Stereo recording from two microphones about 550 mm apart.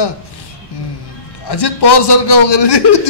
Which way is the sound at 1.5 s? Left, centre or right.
Left.